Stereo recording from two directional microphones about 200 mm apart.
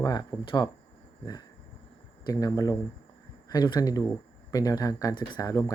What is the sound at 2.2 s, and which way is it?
Speech, 20° left (ahead or behind).